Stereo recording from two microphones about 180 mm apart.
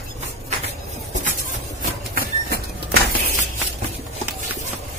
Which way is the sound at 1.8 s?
55° right (ahead or behind).